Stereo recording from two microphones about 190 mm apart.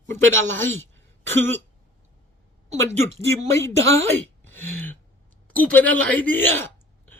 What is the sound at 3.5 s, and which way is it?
Speech, 15° left (ahead or behind).